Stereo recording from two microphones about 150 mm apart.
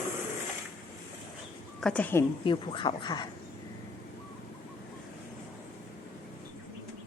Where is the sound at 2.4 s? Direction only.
35° left (ahead or behind).